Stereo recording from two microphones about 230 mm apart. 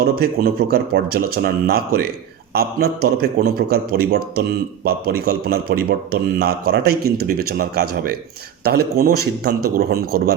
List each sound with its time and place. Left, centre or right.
0.0 s a man's voice: right